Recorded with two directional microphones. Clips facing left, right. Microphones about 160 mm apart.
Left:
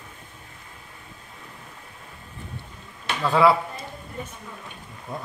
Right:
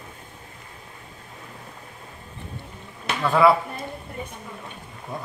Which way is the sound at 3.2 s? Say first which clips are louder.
Right 1 dB; centre (ahead or behind).